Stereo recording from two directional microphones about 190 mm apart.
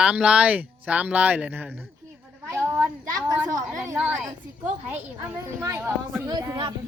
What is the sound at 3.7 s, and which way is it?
Speech, 15° right (ahead or behind).